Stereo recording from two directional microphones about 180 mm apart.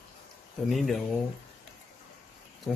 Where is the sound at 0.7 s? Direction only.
Centre (ahead or behind).